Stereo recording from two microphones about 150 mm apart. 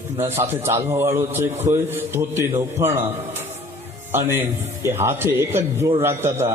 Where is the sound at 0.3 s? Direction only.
15° right (ahead or behind).